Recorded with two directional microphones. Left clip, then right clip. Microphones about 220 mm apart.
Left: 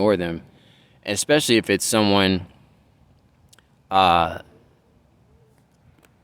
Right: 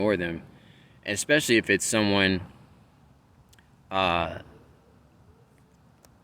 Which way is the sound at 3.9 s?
35° left (ahead or behind).